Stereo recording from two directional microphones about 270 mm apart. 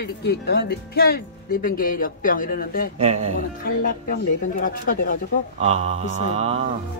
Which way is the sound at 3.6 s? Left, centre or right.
Left.